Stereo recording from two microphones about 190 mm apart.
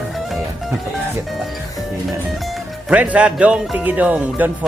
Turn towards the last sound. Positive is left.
turn(degrees=-10)  # may be behind; listen again after turning